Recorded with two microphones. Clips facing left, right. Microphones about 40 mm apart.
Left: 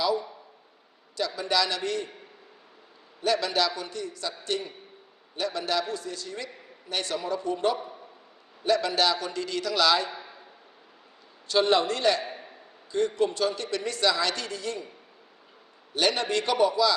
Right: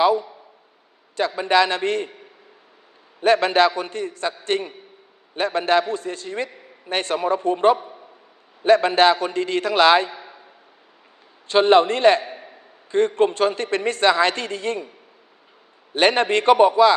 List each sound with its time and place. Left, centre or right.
0.0 s a sound: right
1.1 s a man's voice: right
3.2 s a man's voice: right
10.1 s a sound: right
11.4 s a man's voice: right
16.0 s a man's voice: right